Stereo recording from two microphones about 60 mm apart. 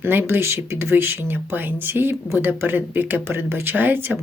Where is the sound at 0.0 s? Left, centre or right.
Right.